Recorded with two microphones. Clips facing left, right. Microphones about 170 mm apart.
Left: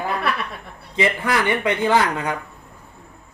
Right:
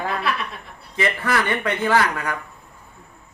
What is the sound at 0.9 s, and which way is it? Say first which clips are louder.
A man's voice: left 2 dB; 15° left (ahead or behind).